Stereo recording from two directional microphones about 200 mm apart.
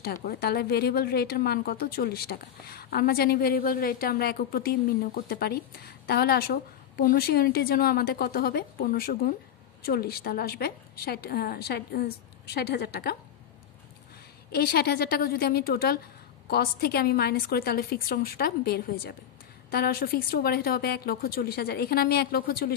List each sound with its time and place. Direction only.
0.0 s a woman's voice: 50° left (ahead or behind)
14.5 s a woman's voice: 50° left (ahead or behind)